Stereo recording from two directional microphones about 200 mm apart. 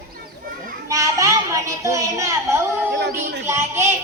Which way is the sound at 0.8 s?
15° right (ahead or behind).